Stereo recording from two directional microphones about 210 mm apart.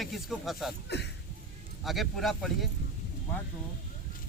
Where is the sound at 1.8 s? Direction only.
Centre (ahead or behind).